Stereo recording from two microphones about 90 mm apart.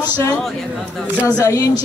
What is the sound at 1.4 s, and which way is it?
Speech, 40° left (ahead or behind).